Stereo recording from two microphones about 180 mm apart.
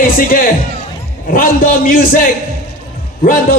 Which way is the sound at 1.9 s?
50° left (ahead or behind).